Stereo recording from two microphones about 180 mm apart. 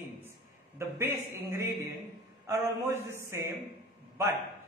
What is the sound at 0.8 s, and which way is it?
A man's voice, 15° right (ahead or behind).